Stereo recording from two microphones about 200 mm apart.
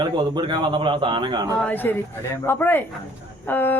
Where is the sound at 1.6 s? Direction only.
10° left (ahead or behind).